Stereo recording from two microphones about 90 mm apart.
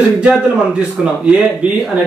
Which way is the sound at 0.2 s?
10° right (ahead or behind).